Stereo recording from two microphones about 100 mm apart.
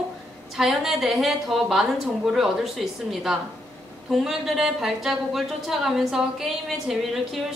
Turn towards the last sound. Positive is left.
turn(degrees=-5)  # may be behind; listen again after turning